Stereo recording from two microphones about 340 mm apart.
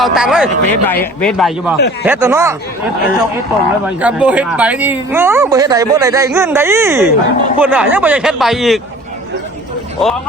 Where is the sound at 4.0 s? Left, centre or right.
Centre.